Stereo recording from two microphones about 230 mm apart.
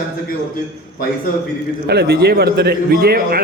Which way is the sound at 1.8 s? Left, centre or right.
Right.